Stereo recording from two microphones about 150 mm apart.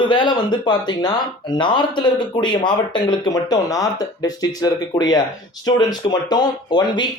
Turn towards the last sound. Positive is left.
turn(degrees=30)  # may be behind; listen again after turning